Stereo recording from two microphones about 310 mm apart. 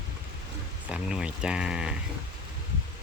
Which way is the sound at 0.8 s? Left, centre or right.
Centre.